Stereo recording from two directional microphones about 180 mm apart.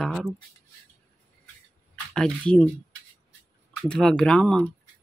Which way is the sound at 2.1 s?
5° left (ahead or behind).